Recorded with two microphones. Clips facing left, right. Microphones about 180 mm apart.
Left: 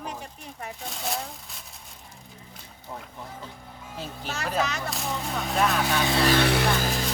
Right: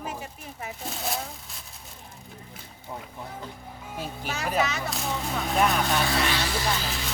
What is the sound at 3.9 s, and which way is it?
Speech, 10° right (ahead or behind).